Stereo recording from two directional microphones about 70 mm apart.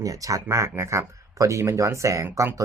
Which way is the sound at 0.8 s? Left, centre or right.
Right.